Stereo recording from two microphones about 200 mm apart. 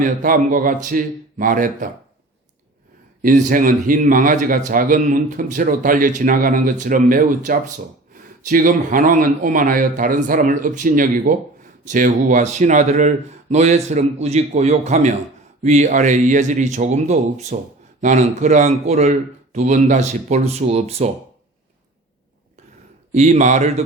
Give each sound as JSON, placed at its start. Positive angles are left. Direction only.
{"t": 0.0, "sound": "a man's voice", "side_deg": -40}
{"t": 3.2, "sound": "a man's voice", "side_deg": -40}
{"t": 23.1, "sound": "a man's voice", "side_deg": -35}